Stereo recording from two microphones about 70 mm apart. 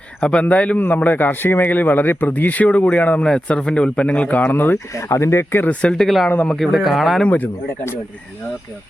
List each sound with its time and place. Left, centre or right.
0.2 s a man's voice: centre
4.9 s speech: left
5.6 s a man's voice: centre
6.2 s speech: left
6.5 s speech: centre
7.3 s speech: left